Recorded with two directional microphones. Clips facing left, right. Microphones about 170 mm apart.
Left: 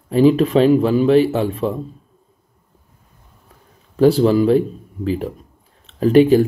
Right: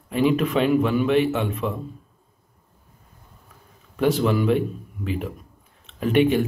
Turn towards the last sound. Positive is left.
turn(degrees=35)  # may be behind; listen again after turning